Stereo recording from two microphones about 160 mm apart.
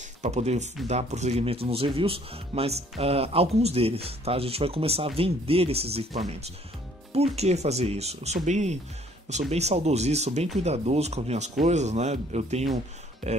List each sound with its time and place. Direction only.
0.2 s speech: 45° right (ahead or behind)